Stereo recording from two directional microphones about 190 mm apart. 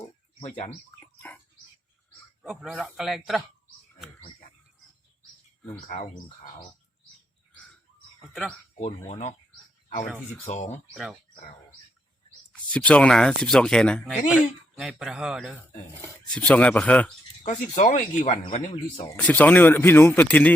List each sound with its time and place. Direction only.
0.4 s speech: 40° left (ahead or behind)
2.4 s speech: 5° right (ahead or behind)
8.2 s speech: centre (ahead or behind)
8.8 s speech: 35° left (ahead or behind)
10.1 s speech: centre (ahead or behind)
10.4 s speech: 35° left (ahead or behind)
10.9 s speech: centre (ahead or behind)
12.5 s speech: 5° left (ahead or behind)
17.4 s speech: 40° left (ahead or behind)
19.0 s speech: 10° left (ahead or behind)